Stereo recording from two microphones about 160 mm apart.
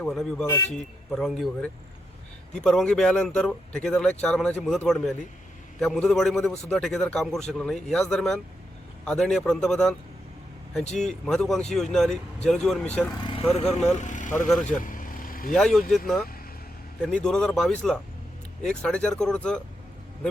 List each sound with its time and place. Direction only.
0.0 s a man's voice: 5° left (ahead or behind)
11.1 s a man's voice: 5° left (ahead or behind)
13.2 s speech: 35° left (ahead or behind); by 14.4 s 50° left (ahead or behind)
14.8 s vehicle: 55° left (ahead or behind)
15.5 s a man's voice: 5° left (ahead or behind)